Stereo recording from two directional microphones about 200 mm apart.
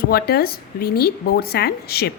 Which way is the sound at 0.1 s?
50° left (ahead or behind).